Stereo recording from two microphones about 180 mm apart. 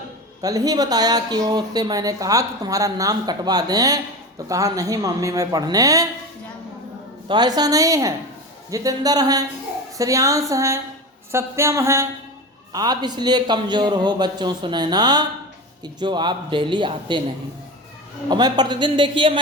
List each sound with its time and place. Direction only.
0.4 s speech: 20° right (ahead or behind)
7.3 s speech: 25° right (ahead or behind)
18.3 s speech: 25° right (ahead or behind)